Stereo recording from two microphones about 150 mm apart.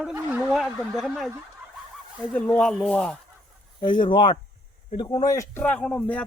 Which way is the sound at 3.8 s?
30° left (ahead or behind).